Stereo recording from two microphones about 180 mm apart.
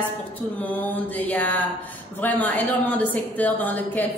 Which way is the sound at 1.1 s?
10° left (ahead or behind).